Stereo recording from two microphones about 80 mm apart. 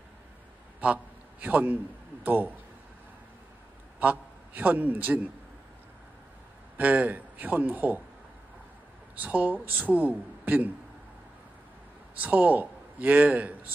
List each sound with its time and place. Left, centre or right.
0.7 s a man's voice: centre
4.0 s a man's voice: centre
6.8 s speech: centre
9.2 s speech: centre
12.2 s a man's voice: centre